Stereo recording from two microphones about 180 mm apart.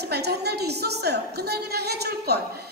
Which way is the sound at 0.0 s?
65° right (ahead or behind).